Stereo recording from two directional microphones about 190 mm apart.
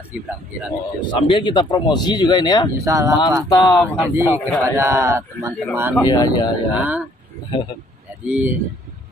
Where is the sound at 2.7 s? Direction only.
15° right (ahead or behind).